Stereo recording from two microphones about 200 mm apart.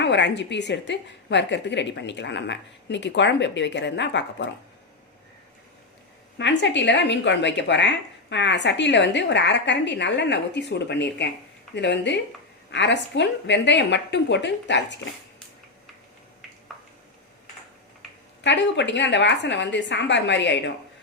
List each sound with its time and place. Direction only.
0.0 s speech: 60° left (ahead or behind)
6.4 s speech: 60° left (ahead or behind)
18.4 s speech: 60° left (ahead or behind)